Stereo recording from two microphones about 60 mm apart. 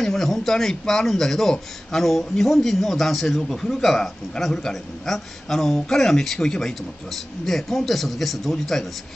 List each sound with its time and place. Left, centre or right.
0.0 s a man's voice: centre